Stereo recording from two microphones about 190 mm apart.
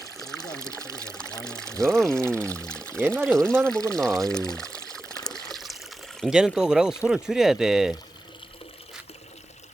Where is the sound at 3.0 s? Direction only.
10° right (ahead or behind).